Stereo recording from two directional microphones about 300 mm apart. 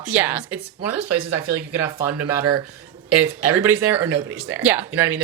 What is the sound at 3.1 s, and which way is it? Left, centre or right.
Speech, left.